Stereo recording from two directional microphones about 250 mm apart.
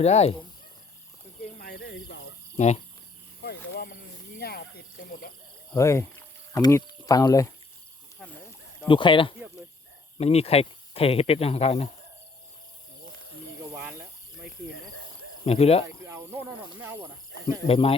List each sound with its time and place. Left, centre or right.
0.0 s speech: left
1.5 s a sound: left
2.6 s speech: left
3.4 s a sound: left
4.4 s speech: left
5.7 s speech: centre
8.9 s speech: centre
15.4 s speech: left
16.0 s a sound: centre
16.8 s speech: centre
17.7 s speech: left